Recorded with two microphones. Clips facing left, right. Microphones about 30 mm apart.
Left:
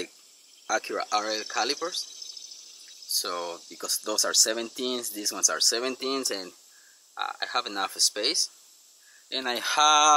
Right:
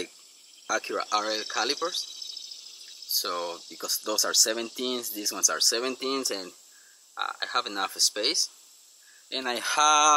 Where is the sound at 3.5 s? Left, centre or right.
Right.